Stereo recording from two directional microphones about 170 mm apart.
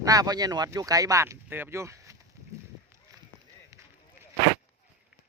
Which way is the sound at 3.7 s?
15° right (ahead or behind).